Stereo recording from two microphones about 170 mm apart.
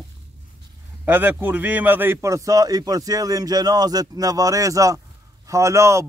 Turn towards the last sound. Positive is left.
turn(degrees=-15)  # may be behind; listen again after turning